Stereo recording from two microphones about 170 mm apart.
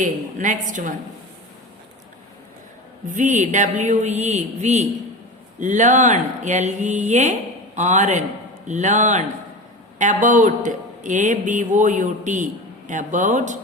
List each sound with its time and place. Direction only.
0.0 s a man's voice: 50° right (ahead or behind)
3.1 s a man's voice: 45° right (ahead or behind)